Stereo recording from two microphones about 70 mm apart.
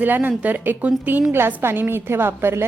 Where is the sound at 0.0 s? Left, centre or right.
Right.